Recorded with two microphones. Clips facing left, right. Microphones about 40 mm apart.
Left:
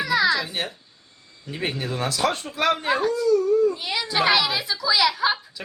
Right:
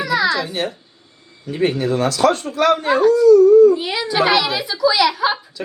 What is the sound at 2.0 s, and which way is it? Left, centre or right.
A woman's voice, centre.